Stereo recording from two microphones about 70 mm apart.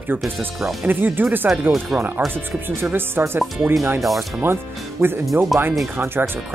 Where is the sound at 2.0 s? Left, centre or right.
Right.